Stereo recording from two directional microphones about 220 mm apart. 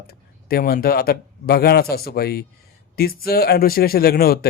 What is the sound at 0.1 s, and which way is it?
A man's voice, 45° left (ahead or behind).